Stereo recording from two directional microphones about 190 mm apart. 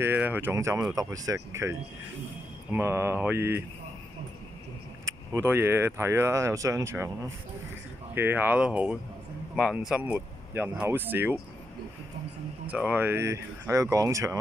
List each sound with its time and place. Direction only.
0.0 s speech: 10° right (ahead or behind)
5.0 s speech: 15° right (ahead or behind)
8.1 s speech: 10° right (ahead or behind)
12.6 s speech: 5° right (ahead or behind)